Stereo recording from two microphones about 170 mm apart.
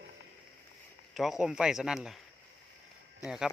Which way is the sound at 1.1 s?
Centre (ahead or behind).